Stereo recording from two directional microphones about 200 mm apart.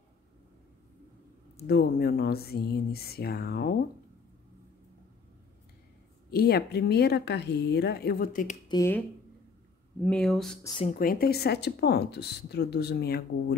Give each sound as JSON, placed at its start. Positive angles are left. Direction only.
{"t": 1.7, "sound": "speech", "side_deg": 50}
{"t": 6.3, "sound": "speech", "side_deg": 55}
{"t": 8.6, "sound": "speech", "side_deg": 15}
{"t": 10.0, "sound": "speech", "side_deg": 5}
{"t": 11.0, "sound": "speech", "side_deg": 45}